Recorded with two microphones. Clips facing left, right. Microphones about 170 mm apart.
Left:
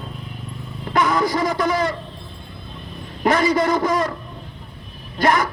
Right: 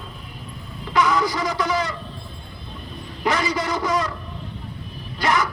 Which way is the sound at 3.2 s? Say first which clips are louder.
Left 6 dB; 50° left (ahead or behind).